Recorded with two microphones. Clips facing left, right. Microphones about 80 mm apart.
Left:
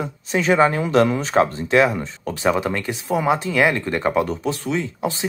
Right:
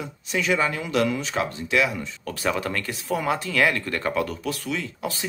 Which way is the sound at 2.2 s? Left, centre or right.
Left.